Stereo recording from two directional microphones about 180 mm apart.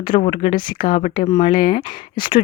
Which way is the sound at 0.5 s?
50° left (ahead or behind).